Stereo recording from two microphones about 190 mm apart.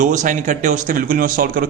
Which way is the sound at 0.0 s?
40° right (ahead or behind).